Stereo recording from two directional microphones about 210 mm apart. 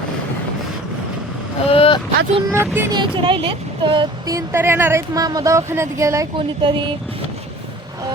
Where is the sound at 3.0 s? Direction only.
25° right (ahead or behind).